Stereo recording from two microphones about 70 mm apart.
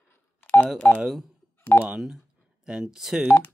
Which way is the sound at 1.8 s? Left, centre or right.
Centre.